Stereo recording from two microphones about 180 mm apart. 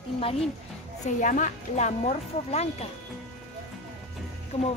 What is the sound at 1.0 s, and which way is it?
Speech, 45° left (ahead or behind).